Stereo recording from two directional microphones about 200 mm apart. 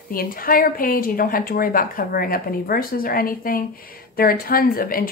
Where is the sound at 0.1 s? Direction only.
45° left (ahead or behind).